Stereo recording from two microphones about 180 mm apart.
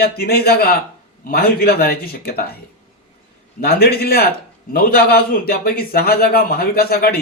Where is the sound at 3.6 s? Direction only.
60° left (ahead or behind).